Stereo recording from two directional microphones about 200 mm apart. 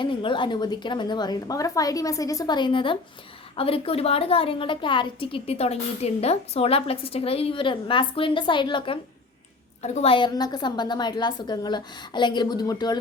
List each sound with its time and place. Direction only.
0.0 s a woman's voice: 25° left (ahead or behind)